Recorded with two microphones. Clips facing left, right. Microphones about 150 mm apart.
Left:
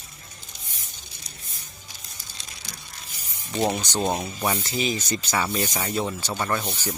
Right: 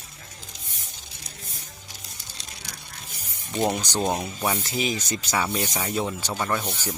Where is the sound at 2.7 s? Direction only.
65° right (ahead or behind).